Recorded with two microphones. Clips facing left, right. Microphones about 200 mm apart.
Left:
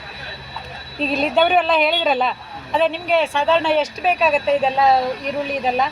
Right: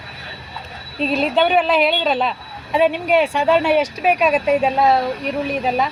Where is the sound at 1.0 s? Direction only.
Centre (ahead or behind).